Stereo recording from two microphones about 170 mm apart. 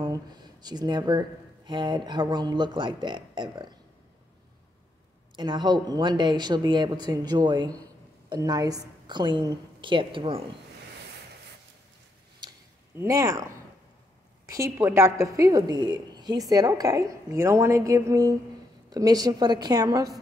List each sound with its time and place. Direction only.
0.0 s speech: 25° right (ahead or behind)
5.3 s speech: 25° right (ahead or behind)
12.9 s speech: 15° right (ahead or behind)
14.5 s speech: 15° right (ahead or behind)